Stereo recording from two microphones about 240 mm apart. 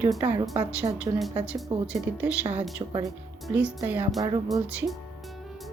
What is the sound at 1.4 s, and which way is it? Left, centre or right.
Speech, centre.